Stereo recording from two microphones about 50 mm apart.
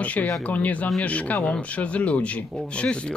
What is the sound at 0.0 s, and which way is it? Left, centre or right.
Speech, left.